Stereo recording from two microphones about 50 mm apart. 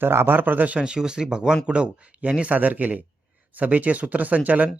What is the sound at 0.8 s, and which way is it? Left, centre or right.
Speech, centre.